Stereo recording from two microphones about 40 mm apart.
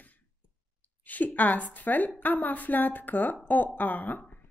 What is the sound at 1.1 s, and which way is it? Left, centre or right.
A woman's voice, left.